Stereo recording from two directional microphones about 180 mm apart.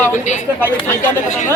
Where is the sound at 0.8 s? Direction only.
40° left (ahead or behind).